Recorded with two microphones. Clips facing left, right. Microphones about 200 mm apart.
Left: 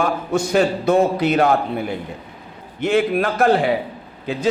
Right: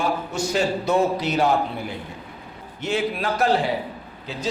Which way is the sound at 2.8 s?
55° left (ahead or behind).